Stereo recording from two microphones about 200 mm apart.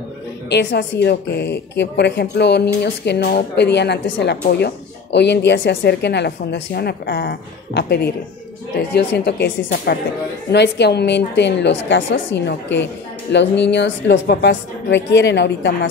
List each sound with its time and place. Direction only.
0.5 s a woman's voice: 60° left (ahead or behind)